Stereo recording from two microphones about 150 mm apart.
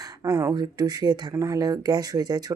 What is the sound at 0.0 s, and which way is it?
Speech, 25° right (ahead or behind).